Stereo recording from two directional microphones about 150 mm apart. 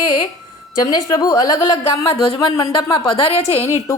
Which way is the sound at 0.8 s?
25° left (ahead or behind).